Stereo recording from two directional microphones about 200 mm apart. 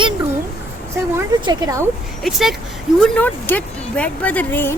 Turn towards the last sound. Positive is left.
turn(degrees=10)  # may be behind; listen again after turning